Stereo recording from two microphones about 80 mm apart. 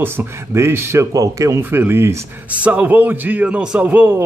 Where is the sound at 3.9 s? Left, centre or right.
Right.